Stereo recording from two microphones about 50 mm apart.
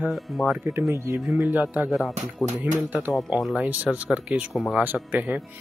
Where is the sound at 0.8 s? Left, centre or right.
Right.